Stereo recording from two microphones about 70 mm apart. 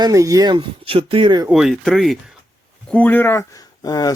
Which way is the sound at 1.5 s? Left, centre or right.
Centre.